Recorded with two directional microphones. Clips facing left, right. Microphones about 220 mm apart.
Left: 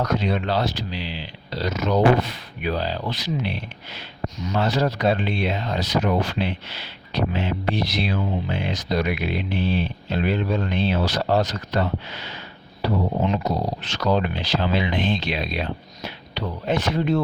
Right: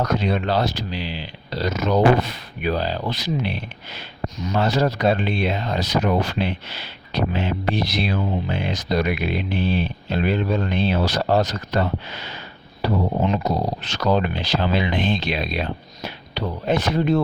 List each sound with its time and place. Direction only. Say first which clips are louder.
0.0 s speech: right 1 dB; 45° right (ahead or behind)